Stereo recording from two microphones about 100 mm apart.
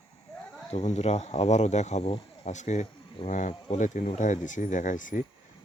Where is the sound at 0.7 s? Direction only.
90° left.